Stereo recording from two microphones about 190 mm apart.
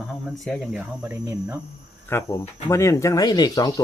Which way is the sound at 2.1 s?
15° left (ahead or behind).